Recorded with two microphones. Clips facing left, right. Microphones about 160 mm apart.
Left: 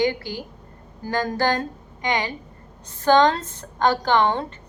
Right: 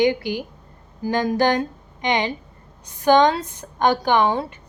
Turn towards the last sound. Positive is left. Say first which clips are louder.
# right 1 dB
turn(degrees=-10)  # may be behind; listen again after turning